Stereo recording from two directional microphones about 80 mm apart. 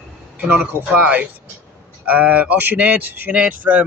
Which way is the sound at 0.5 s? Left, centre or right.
Centre.